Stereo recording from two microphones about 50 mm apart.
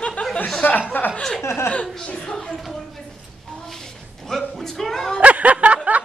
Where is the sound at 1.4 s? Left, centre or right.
Left.